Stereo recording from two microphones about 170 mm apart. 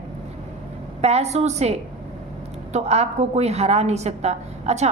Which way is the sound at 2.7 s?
40° right (ahead or behind).